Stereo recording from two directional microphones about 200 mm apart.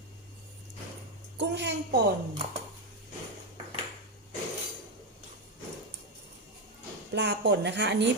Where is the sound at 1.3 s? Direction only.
60° right (ahead or behind).